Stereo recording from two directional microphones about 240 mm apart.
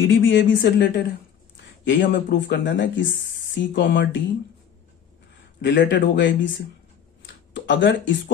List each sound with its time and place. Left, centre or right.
0.1 s a woman's voice: left
5.6 s speech: left
7.5 s speech: left